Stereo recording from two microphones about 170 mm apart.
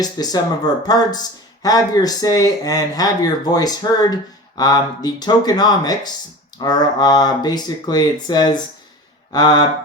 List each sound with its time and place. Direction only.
0.0 s speech: 25° left (ahead or behind)